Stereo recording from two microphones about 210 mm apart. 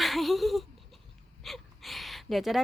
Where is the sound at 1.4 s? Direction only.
Centre (ahead or behind).